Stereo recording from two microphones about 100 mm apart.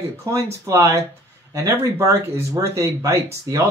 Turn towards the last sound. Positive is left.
turn(degrees=-30)  # may be behind; listen again after turning